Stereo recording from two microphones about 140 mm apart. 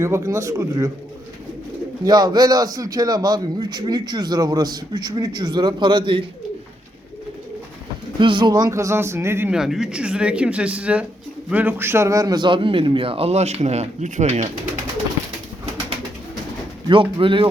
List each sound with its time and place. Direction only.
0.0 s a man's voice: 20° right (ahead or behind)
2.0 s a man's voice: 30° right (ahead or behind)
8.2 s a man's voice: 35° right (ahead or behind); by 9.5 s 15° right (ahead or behind)
9.5 s a man's voice: 5° right (ahead or behind); by 14.5 s 55° right (ahead or behind)
16.9 s a man's voice: 40° right (ahead or behind)